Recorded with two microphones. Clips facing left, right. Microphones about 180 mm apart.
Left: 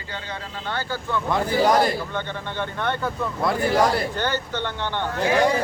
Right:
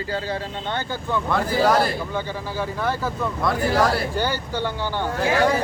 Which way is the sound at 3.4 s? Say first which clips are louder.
Left 1 dB; 25° left (ahead or behind).